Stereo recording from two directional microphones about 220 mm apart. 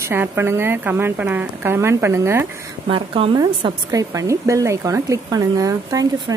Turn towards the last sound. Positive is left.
turn(degrees=-15)  # may be behind; listen again after turning